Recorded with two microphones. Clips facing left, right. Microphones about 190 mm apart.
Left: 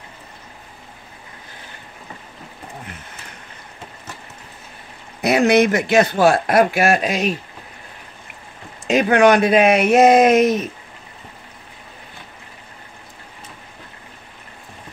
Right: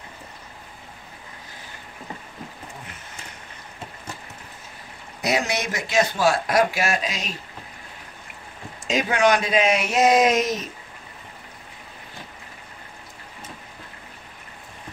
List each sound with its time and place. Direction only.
5.2 s a man's voice: 60° left (ahead or behind)
8.8 s a man's voice: 60° left (ahead or behind)